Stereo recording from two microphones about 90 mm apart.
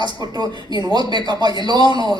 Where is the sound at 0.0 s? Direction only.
50° right (ahead or behind).